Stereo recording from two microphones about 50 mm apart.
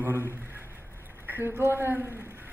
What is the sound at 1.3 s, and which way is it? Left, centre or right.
Speech, right.